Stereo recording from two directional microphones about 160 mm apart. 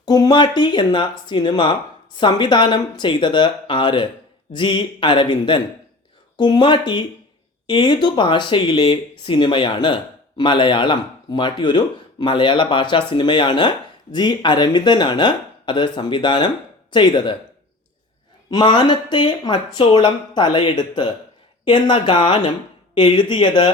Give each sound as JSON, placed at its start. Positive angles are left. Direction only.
{"t": 0.0, "sound": "speech", "side_deg": 25}
{"t": 18.5, "sound": "speech", "side_deg": 25}